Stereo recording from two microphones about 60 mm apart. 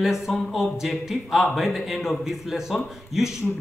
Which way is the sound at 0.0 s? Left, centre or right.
Centre.